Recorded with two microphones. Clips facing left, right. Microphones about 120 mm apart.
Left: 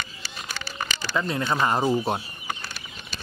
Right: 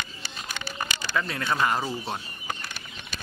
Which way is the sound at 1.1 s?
25° left (ahead or behind).